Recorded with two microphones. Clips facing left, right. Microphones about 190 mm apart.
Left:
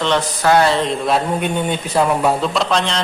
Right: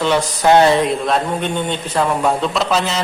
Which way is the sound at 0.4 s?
20° right (ahead or behind).